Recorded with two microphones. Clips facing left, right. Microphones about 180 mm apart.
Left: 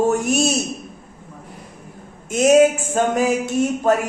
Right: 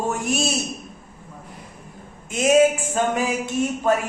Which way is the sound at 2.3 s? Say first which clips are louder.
Left 3 dB; 45° left (ahead or behind).